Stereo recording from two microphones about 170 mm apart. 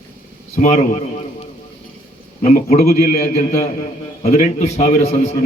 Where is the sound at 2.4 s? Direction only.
45° left (ahead or behind).